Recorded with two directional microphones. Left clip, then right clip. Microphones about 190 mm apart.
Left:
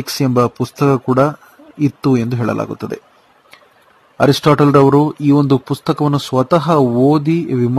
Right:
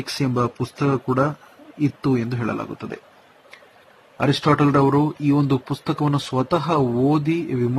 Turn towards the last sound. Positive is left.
turn(degrees=40)  # may be behind; listen again after turning